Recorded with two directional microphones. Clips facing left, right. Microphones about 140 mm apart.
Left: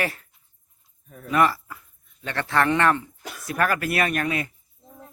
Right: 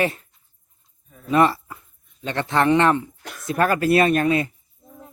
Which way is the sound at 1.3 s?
25° right (ahead or behind).